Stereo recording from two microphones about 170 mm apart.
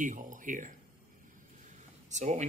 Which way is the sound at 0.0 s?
50° right (ahead or behind).